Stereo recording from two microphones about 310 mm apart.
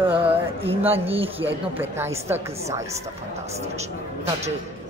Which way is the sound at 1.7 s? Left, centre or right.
Centre.